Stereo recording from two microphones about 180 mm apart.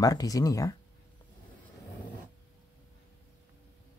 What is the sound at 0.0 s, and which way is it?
Speech, 20° left (ahead or behind).